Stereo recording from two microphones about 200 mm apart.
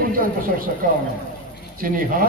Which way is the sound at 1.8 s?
45° right (ahead or behind).